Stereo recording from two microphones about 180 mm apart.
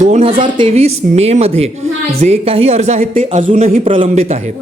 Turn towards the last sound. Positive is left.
turn(degrees=-30)  # may be behind; listen again after turning